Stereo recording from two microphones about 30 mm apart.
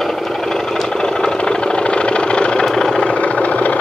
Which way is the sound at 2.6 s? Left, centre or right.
Centre.